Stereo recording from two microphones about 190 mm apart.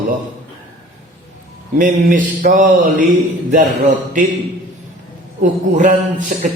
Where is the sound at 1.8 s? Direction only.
45° right (ahead or behind).